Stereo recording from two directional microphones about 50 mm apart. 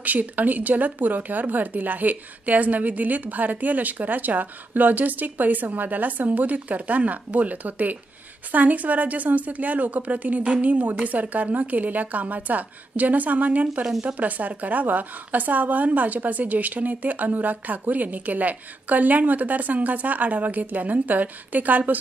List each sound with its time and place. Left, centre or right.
0.0 s speech: right